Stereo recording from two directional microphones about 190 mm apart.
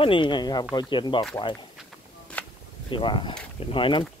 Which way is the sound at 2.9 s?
25° left (ahead or behind).